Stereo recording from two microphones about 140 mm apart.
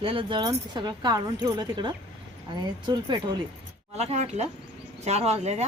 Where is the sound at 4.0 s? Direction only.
50° right (ahead or behind).